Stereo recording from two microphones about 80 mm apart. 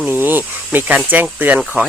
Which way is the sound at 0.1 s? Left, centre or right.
Right.